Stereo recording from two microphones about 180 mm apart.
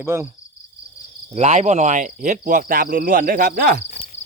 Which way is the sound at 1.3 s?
35° right (ahead or behind).